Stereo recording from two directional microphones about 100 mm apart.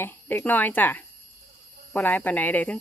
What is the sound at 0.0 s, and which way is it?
Speech, 20° left (ahead or behind).